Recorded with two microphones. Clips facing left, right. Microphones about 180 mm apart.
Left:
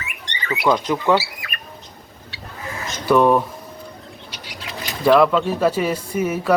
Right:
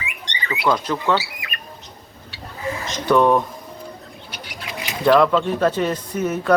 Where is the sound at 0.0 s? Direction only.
15° right (ahead or behind).